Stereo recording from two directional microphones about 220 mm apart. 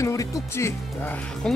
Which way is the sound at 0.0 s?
15° left (ahead or behind).